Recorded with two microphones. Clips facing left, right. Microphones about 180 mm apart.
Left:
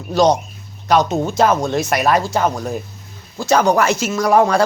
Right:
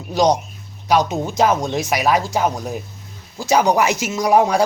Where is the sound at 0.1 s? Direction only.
15° right (ahead or behind).